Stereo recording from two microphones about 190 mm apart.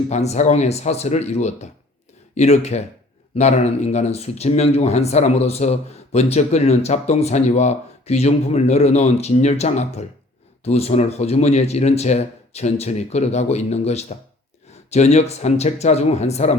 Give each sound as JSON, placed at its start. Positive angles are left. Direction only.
{"t": 0.1, "sound": "speech", "side_deg": 35}